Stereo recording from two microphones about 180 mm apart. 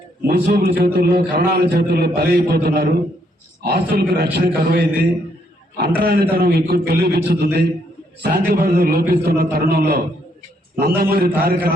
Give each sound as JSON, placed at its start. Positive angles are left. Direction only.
{"t": 0.3, "sound": "a man's voice", "side_deg": -60}